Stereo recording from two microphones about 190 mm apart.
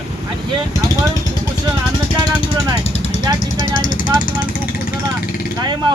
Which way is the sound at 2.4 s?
35° left (ahead or behind).